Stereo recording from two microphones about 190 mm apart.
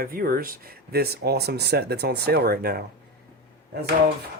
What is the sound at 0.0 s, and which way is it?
Speech, 50° right (ahead or behind).